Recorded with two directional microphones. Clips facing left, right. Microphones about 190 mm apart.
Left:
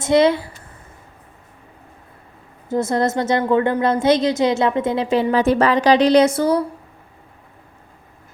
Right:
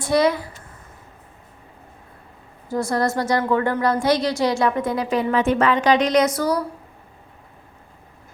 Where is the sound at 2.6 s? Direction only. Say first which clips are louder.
Left 3 dB; 20° left (ahead or behind).